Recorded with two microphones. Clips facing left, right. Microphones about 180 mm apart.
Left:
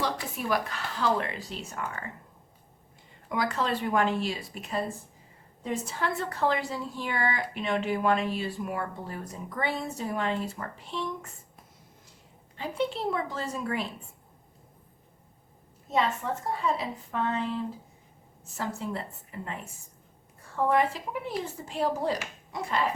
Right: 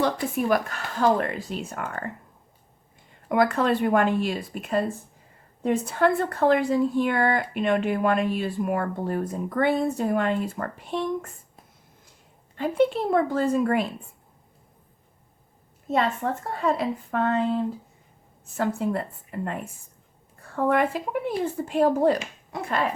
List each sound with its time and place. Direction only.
0.0 s speech: 50° right (ahead or behind)
3.2 s speech: 55° right (ahead or behind)
12.5 s speech: 55° right (ahead or behind)
15.9 s speech: 60° right (ahead or behind)
18.4 s speech: 60° right (ahead or behind)
20.6 s speech: 55° right (ahead or behind)